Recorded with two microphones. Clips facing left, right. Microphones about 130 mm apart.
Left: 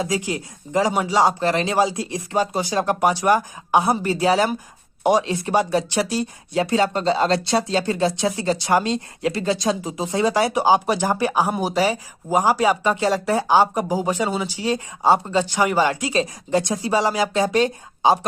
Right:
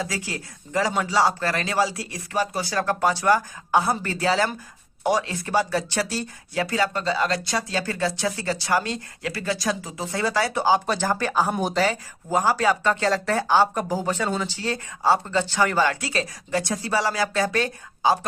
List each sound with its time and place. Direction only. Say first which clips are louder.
0.0 s speech: left 6 dB; 20° left (ahead or behind)